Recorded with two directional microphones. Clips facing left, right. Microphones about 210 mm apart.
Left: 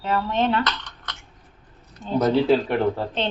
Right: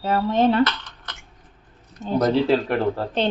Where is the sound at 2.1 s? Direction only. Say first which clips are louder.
Even; 5° left (ahead or behind).